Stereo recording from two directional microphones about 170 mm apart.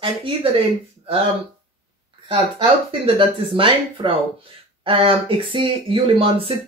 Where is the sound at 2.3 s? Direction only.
30° right (ahead or behind).